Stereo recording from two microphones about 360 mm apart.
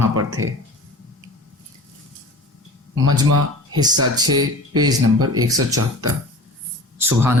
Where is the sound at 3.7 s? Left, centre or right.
Centre.